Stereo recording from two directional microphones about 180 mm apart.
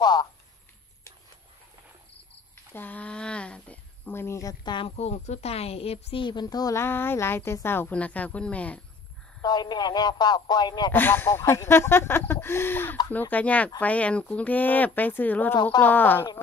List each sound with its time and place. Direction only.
0.0 s a sound: 25° left (ahead or behind)
2.5 s speech: 10° left (ahead or behind)
9.4 s a man's voice: 25° left (ahead or behind)
10.9 s speech: 10° left (ahead or behind)